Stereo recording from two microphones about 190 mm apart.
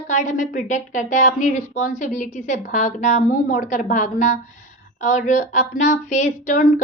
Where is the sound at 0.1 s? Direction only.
40° left (ahead or behind).